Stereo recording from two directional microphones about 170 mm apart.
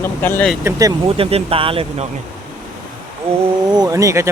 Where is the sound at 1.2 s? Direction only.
35° right (ahead or behind).